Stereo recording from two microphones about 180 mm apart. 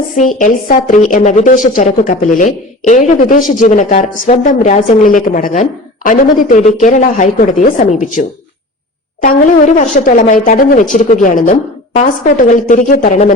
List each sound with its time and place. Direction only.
0.2 s a woman's voice: 50° left (ahead or behind)
9.2 s a woman's voice: 45° left (ahead or behind)